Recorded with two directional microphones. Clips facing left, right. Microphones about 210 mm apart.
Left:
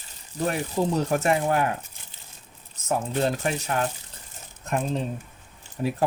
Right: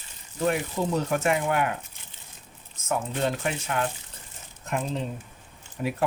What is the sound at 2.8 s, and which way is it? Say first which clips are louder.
Speech: left 2 dB; 35° left (ahead or behind).